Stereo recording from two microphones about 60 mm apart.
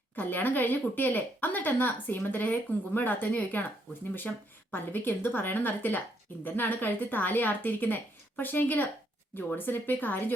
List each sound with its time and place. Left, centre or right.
0.2 s speech: left
4.7 s speech: left